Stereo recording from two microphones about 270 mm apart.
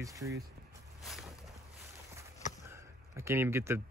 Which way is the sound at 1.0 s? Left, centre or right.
Centre.